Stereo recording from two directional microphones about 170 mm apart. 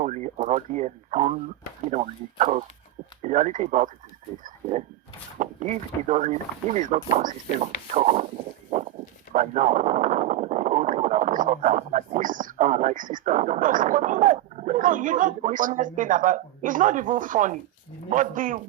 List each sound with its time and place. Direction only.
0.0 s speech: 45° right (ahead or behind)
5.4 s speech: 50° right (ahead or behind)
9.3 s speech: 50° right (ahead or behind)